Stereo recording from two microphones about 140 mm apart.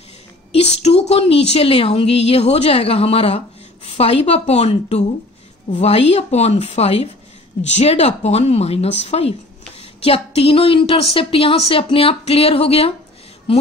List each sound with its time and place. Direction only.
0.5 s a woman's voice: 50° left (ahead or behind)